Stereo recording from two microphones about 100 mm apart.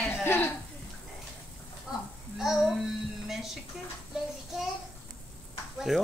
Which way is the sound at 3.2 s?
5° right (ahead or behind).